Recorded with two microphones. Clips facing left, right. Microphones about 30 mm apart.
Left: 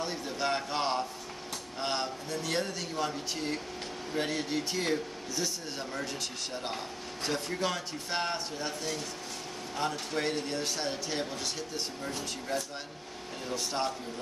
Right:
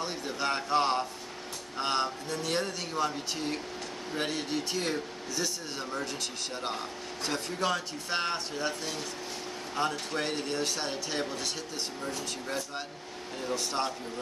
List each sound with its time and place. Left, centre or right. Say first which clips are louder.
0.0 s a sound: even; centre
1.8 s speech: right 4 dB; centre
7.2 s speech: right 1 dB; centre